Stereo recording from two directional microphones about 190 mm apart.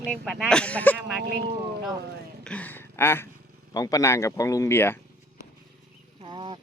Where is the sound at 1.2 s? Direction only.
60° right (ahead or behind).